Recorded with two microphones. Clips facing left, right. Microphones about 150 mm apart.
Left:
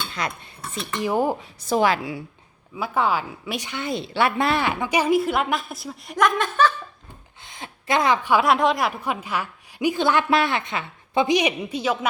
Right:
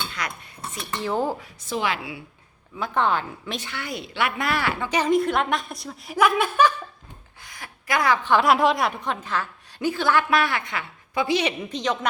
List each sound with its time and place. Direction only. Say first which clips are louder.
0.1 s cutlery: left 3 dB; 30° left (ahead or behind)
0.9 s a woman's voice: left 3 dB; 15° left (ahead or behind)
1.6 s speech: left 6 dB; 40° left (ahead or behind)
2.7 s a woman's voice: left 1 dB; 5° left (ahead or behind); by 6.7 s 10° right (ahead or behind)
7.4 s a sound: left 4 dB; 25° left (ahead or behind)
8.3 s a woman's voice: right 2 dB; centre (ahead or behind)